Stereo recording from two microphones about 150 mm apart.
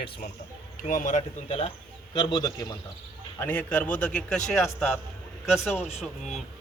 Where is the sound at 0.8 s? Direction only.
65° left (ahead or behind).